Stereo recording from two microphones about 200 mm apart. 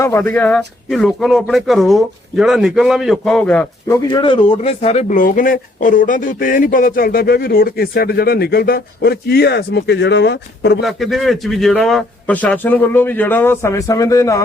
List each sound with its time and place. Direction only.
0.3 s speech: 5° left (ahead or behind)
3.9 s speech: 25° left (ahead or behind); by 10.8 s 60° left (ahead or behind)
10.8 s a man's voice: centre (ahead or behind); by 14.4 s 15° left (ahead or behind)